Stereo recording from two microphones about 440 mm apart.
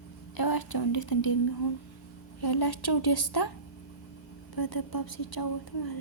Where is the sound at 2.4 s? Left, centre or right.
Left.